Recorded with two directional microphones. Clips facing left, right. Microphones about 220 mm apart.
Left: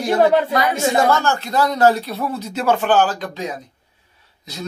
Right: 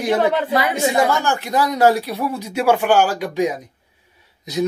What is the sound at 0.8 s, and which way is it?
Speech, 15° right (ahead or behind).